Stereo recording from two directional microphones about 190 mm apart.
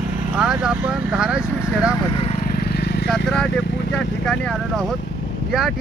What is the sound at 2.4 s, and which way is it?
Vehicle, 50° left (ahead or behind).